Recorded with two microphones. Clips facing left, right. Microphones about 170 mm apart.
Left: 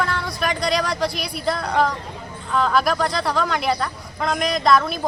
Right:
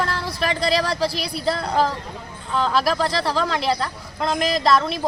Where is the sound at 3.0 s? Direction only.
Centre (ahead or behind).